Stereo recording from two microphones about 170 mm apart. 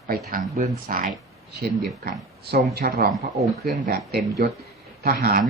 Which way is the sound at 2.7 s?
65° right (ahead or behind).